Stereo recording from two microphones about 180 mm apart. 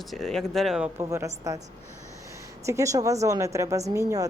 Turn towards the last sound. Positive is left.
turn(degrees=-20)  # may be behind; listen again after turning